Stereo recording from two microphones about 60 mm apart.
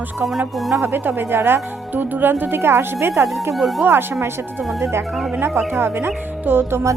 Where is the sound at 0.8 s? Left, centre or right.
Right.